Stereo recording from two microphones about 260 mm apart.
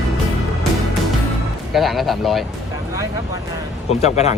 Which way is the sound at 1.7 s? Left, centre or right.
Centre.